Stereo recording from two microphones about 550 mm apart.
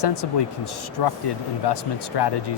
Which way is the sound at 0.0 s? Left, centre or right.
Left.